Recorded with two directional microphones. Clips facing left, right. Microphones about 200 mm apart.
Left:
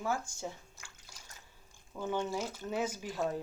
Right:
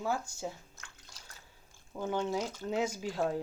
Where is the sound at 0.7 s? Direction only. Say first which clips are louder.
Right 1 dB; 10° left (ahead or behind).